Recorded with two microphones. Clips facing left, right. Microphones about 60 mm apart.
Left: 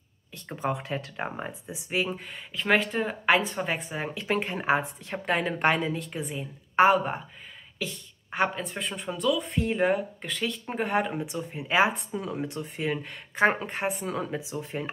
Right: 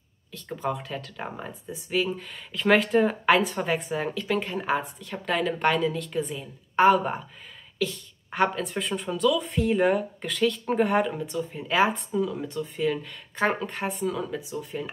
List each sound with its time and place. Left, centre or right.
0.5 s a woman's voice: left
2.3 s speech: centre
4.1 s a woman's voice: left; by 11.1 s centre
11.1 s speech: centre
12.2 s a woman's voice: left
14.0 s a woman's voice: left